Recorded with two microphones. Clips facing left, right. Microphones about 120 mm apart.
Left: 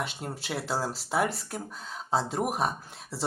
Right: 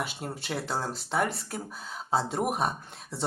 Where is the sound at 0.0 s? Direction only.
Centre (ahead or behind).